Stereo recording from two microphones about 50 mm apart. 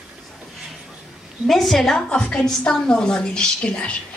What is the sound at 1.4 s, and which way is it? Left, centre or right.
Speech, centre.